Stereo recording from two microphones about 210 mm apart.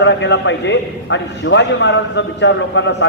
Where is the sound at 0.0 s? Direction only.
55° left (ahead or behind).